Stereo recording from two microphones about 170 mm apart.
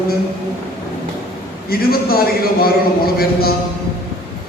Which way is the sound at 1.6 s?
60° left (ahead or behind).